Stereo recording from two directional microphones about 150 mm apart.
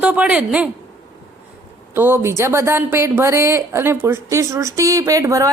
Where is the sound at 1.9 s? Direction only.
15° right (ahead or behind).